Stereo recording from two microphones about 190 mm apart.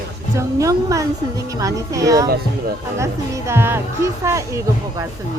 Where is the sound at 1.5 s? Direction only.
15° right (ahead or behind).